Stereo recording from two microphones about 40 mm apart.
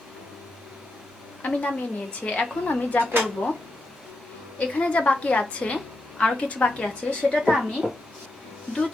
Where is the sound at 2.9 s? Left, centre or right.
Left.